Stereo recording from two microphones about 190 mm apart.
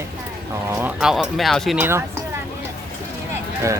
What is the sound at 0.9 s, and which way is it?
Speech, centre (ahead or behind).